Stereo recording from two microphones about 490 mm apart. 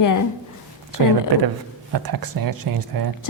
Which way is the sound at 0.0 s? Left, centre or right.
Left.